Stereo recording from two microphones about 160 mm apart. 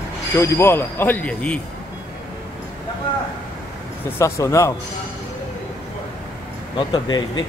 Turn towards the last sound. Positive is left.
turn(degrees=30)  # may be behind; listen again after turning